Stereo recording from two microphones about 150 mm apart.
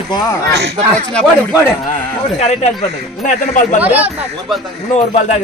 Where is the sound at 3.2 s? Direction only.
60° left (ahead or behind).